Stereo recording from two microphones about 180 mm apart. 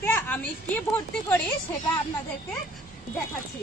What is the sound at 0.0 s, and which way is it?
Speech, 10° left (ahead or behind).